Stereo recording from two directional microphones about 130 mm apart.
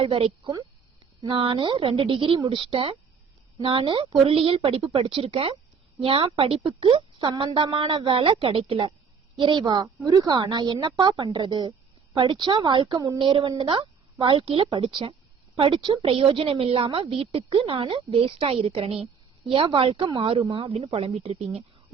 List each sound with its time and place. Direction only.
0.0 s a woman's voice: 45° right (ahead or behind)
13.6 s a woman's voice: 40° right (ahead or behind)